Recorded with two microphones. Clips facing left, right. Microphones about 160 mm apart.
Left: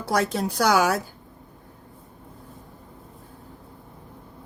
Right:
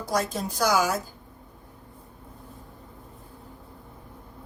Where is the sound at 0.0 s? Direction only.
65° left (ahead or behind).